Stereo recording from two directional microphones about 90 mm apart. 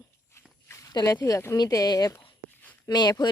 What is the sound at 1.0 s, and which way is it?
Speech, 35° left (ahead or behind).